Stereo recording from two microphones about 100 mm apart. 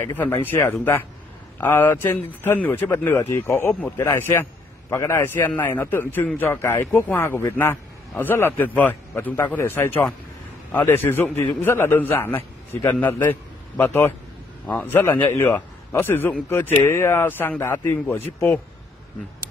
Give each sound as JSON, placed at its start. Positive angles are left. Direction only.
{"t": 0.0, "sound": "a man's voice", "side_deg": 25}